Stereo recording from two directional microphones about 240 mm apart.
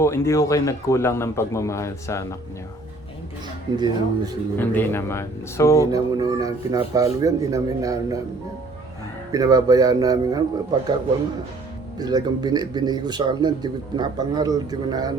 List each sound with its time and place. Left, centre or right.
0.0 s a man's voice: centre
3.8 s a man's voice: centre
4.5 s a man's voice: centre
5.9 s a man's voice: centre
9.3 s a man's voice: centre
11.9 s a man's voice: centre